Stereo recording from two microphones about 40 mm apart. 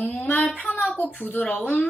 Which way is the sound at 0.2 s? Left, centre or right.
Left.